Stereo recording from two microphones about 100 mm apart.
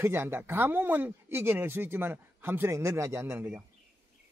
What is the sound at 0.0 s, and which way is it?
Speech, 25° right (ahead or behind).